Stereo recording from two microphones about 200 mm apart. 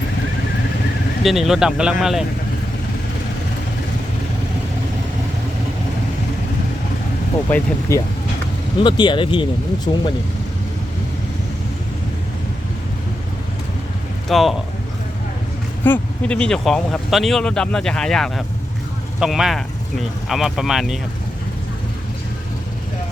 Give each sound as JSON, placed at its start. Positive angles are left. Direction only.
{"t": 1.2, "sound": "speech", "side_deg": 0}
{"t": 7.5, "sound": "speech", "side_deg": 15}
{"t": 14.3, "sound": "speech", "side_deg": 0}
{"t": 15.8, "sound": "speech", "side_deg": 10}